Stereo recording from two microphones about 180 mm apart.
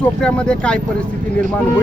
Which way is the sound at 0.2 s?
5° left (ahead or behind).